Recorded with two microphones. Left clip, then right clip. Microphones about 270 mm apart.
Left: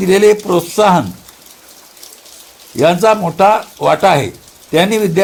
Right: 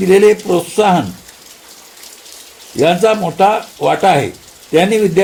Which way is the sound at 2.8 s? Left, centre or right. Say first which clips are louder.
Left 1 dB; left.